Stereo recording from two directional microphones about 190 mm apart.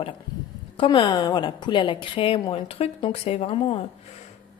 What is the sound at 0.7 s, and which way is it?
A woman's voice, 25° left (ahead or behind).